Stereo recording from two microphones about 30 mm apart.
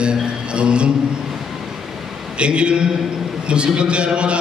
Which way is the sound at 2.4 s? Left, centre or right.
Right.